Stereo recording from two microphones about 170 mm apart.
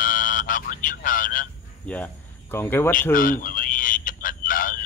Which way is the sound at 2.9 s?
55° left (ahead or behind).